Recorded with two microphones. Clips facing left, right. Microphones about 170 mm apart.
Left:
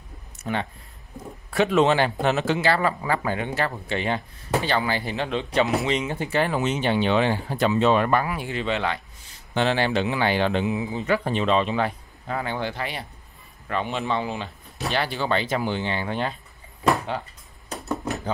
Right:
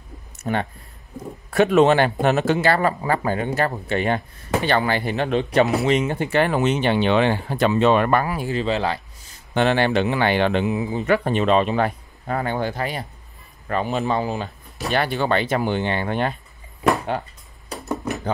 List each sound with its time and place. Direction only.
0.4 s speech: 50° right (ahead or behind)
8.3 s speech: 35° right (ahead or behind)
9.5 s speech: 55° right (ahead or behind); by 14.5 s 40° right (ahead or behind)
14.9 s speech: 55° right (ahead or behind)